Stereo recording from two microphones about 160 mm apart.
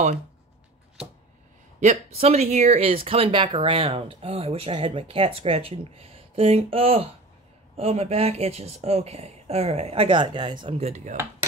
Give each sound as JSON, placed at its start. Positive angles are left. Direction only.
{"t": 1.8, "sound": "speech", "side_deg": -45}
{"t": 10.8, "sound": "speech", "side_deg": -40}